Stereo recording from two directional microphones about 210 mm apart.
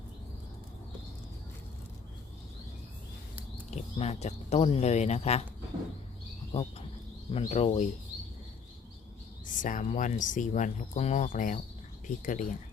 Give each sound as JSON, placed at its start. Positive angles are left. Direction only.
{"t": 3.7, "sound": "speech", "side_deg": 30}
{"t": 6.5, "sound": "speech", "side_deg": 30}
{"t": 9.6, "sound": "speech", "side_deg": 40}